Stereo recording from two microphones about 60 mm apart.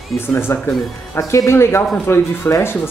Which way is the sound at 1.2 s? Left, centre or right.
Left.